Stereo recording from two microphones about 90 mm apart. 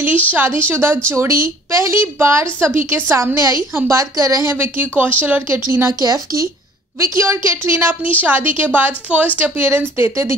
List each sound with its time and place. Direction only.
0.0 s a woman's voice: 20° right (ahead or behind)